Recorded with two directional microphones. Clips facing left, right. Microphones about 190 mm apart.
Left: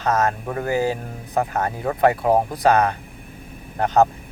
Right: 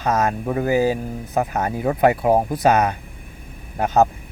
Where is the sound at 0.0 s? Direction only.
10° right (ahead or behind).